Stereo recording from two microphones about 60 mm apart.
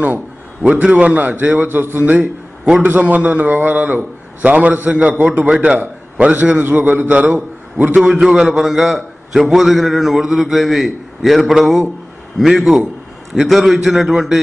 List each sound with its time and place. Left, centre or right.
0.0 s a man's voice: right
7.3 s a man's voice: centre
8.1 s a man's voice: centre